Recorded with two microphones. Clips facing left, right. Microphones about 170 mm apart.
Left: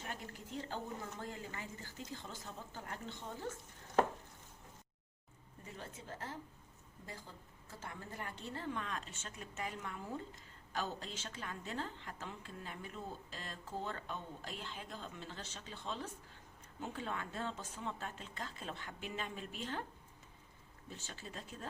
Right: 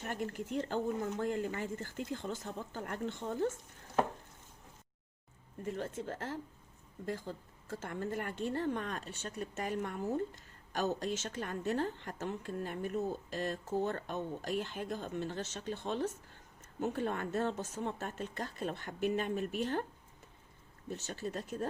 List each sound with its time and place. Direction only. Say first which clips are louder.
0.0 s a woman's voice: right 8 dB; 50° right (ahead or behind)
0.4 s speech: right 8 dB; 65° right (ahead or behind)
5.6 s a woman's voice: right 12 dB; 50° right (ahead or behind)
6.0 s speech: right 8 dB; 75° right (ahead or behind)
7.0 s a woman's voice: right 12 dB; 60° right (ahead or behind)
14.1 s a woman's voice: right 9 dB; 65° right (ahead or behind)
15.7 s a woman's voice: right 9 dB; 50° right (ahead or behind)
21.1 s a woman's voice: right 11 dB; 45° right (ahead or behind)